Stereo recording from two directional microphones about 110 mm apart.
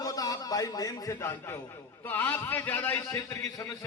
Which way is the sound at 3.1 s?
30° left (ahead or behind).